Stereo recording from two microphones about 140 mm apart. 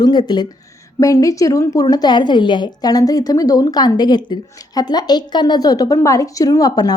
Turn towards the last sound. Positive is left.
turn(degrees=25)  # may be behind; listen again after turning